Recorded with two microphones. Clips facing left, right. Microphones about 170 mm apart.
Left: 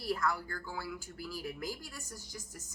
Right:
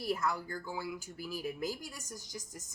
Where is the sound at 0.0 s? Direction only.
20° right (ahead or behind).